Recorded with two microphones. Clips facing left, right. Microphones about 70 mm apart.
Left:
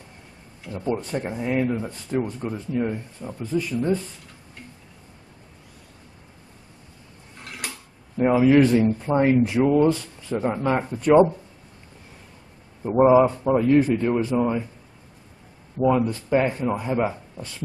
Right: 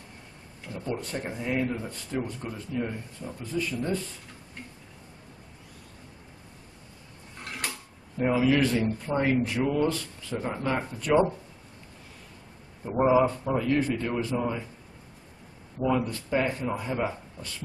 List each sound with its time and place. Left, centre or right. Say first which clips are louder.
0.7 s speech: left 6 dB; left
8.3 s speech: left 7 dB; left
12.8 s speech: left 6 dB; left
16.1 s speech: left 6 dB; left